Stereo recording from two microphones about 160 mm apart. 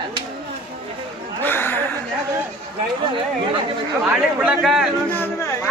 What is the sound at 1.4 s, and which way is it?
Speech, 15° left (ahead or behind).